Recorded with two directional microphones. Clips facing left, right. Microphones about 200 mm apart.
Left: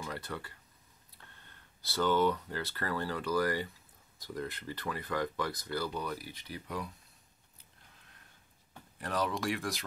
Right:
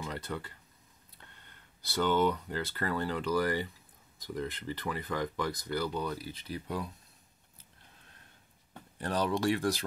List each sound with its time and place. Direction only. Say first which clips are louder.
0.1 s speech: right 2 dB; 20° right (ahead or behind)
2.0 s speech: right 1 dB; 15° right (ahead or behind)
8.9 s speech: right 3 dB; 30° right (ahead or behind)